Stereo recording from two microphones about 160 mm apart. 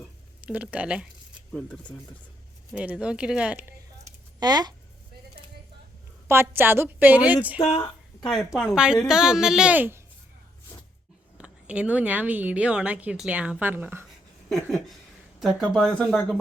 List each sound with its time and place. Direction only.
0.4 s speech: 10° right (ahead or behind)
1.5 s speech: 5° left (ahead or behind)
2.7 s speech: 5° right (ahead or behind)
4.4 s speech: 25° right (ahead or behind)
6.2 s speech: 15° right (ahead or behind)
8.3 s speech: centre (ahead or behind)
11.3 s speech: 5° right (ahead or behind)
14.5 s speech: centre (ahead or behind)